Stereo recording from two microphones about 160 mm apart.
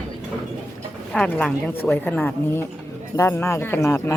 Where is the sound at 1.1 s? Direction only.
5° left (ahead or behind).